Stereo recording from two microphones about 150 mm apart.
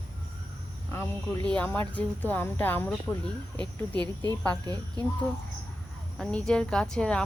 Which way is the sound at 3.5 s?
30° right (ahead or behind).